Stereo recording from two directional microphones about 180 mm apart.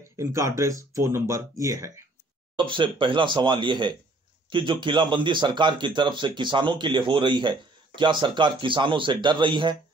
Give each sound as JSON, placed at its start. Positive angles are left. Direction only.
{"t": 0.2, "sound": "speech", "side_deg": -15}
{"t": 2.5, "sound": "speech", "side_deg": -25}